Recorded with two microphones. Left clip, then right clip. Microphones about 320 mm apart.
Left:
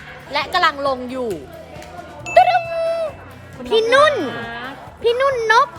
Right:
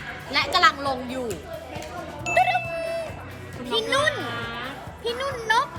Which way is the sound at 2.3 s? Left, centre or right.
Left.